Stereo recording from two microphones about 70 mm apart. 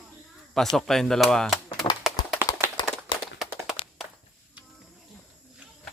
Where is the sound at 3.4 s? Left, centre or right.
Centre.